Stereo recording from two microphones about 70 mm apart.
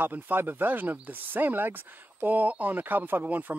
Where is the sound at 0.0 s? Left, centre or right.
Right.